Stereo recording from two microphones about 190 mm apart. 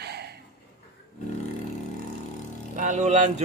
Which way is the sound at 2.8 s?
40° right (ahead or behind).